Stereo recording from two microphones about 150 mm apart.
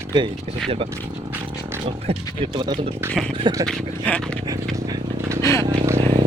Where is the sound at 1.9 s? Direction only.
40° right (ahead or behind).